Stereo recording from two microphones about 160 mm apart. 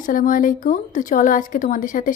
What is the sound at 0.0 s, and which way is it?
Speech, 60° left (ahead or behind).